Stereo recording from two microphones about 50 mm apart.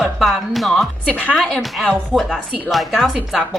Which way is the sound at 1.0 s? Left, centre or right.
Left.